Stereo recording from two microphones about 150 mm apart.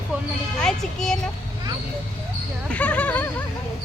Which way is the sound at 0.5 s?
5° left (ahead or behind).